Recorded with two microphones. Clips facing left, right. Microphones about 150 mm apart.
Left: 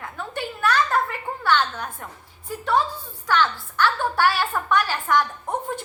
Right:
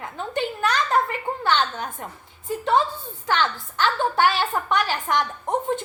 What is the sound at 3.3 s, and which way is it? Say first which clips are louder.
A woman's voice: left 1 dB; 20° right (ahead or behind).